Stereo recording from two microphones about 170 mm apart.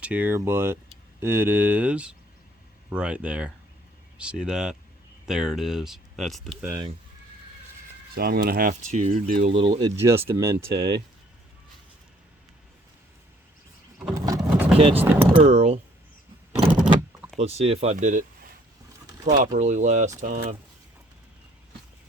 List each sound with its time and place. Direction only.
0.0 s speech: 10° right (ahead or behind)
8.1 s speech: 60° right (ahead or behind)
8.9 s speech: 40° right (ahead or behind)
9.2 s speech: 55° right (ahead or behind)
9.5 s speech: 30° right (ahead or behind)
9.9 s speech: 15° right (ahead or behind)
14.3 s vehicle: 5° right (ahead or behind)
14.9 s speech: 10° right (ahead or behind)
15.4 s speech: 40° right (ahead or behind)
17.4 s speech: 35° right (ahead or behind)
17.9 s speech: 50° right (ahead or behind)